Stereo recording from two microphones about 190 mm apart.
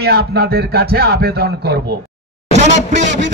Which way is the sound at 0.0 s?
55° right (ahead or behind).